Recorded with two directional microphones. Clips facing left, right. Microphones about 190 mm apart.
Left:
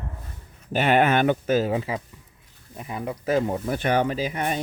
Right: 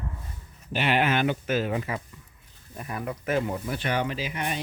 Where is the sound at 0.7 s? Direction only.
45° left (ahead or behind).